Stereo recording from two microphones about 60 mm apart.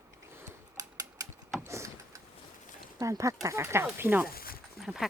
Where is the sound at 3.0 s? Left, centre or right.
Right.